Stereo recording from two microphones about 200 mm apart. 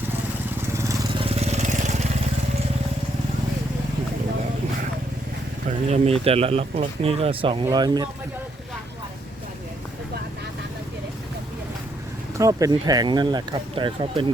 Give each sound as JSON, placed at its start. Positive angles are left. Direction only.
{"t": 0.7, "sound": "vehicle", "side_deg": -15}
{"t": 1.2, "sound": "vehicle", "side_deg": -30}
{"t": 5.9, "sound": "speech", "side_deg": -30}
{"t": 12.4, "sound": "speech", "side_deg": -15}